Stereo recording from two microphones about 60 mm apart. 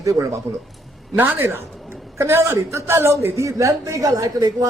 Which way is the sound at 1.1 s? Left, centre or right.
Right.